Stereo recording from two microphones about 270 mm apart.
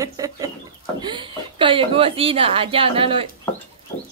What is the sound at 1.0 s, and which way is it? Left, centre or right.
A woman's voice, centre.